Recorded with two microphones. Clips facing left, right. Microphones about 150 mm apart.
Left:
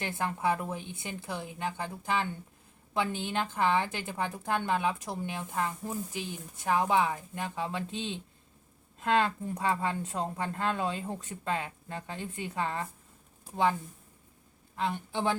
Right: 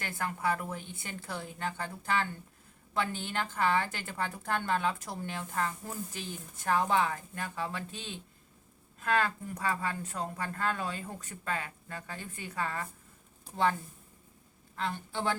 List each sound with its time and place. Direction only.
0.0 s a woman's voice: 20° left (ahead or behind)
14.8 s a woman's voice: 15° left (ahead or behind)